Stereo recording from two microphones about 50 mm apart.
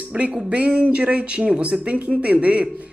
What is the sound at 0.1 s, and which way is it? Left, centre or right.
Speech, right.